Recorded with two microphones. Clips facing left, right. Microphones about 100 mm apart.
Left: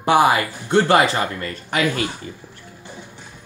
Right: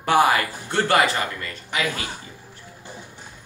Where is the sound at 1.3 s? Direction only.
40° left (ahead or behind).